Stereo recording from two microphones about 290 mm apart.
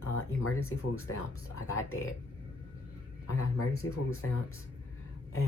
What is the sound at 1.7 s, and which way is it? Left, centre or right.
Speech, left.